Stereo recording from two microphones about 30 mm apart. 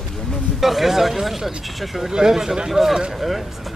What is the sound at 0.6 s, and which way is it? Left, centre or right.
Speech, centre.